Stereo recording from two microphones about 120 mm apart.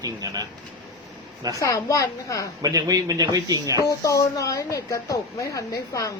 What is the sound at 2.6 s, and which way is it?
Speech, 30° right (ahead or behind).